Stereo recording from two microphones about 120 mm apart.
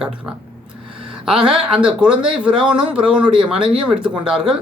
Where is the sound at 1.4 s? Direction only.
5° right (ahead or behind).